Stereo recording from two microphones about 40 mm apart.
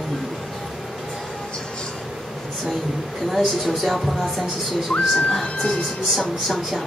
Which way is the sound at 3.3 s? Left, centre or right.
Centre.